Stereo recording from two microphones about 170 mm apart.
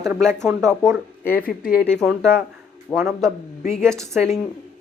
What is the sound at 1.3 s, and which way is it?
Speech, 60° left (ahead or behind).